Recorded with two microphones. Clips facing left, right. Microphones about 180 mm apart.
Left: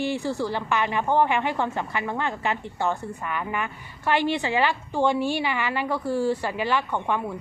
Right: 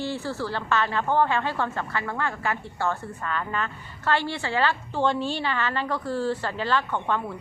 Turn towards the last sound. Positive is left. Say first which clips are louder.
# even
turn(degrees=15)  # may be behind; listen again after turning